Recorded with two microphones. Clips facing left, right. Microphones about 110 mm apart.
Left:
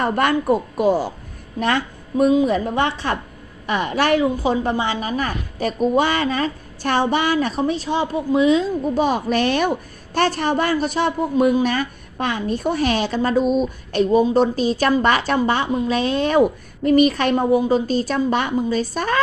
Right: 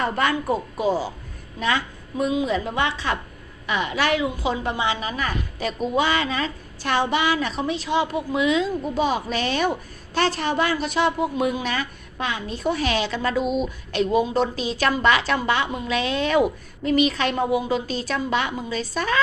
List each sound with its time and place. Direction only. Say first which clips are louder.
0.0 s a woman's voice: left 4 dB; 55° left (ahead or behind)